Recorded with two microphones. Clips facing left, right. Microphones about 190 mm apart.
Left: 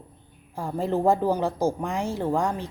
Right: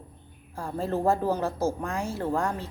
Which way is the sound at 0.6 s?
15° left (ahead or behind).